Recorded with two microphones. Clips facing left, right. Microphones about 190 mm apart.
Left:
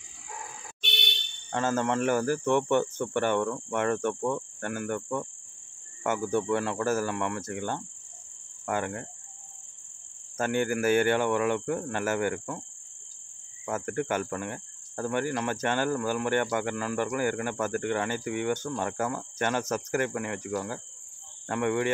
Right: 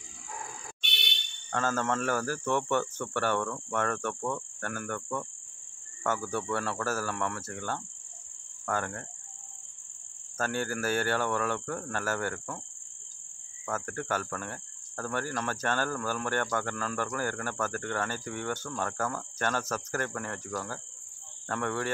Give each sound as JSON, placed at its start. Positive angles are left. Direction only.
{"t": 1.5, "sound": "cricket", "side_deg": 20}
{"t": 10.3, "sound": "cricket", "side_deg": 15}
{"t": 13.7, "sound": "cricket", "side_deg": 15}